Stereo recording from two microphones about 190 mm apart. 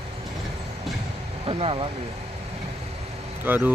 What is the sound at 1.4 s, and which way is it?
Speech, 30° right (ahead or behind).